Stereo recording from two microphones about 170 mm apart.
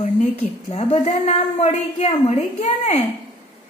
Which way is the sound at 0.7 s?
40° left (ahead or behind).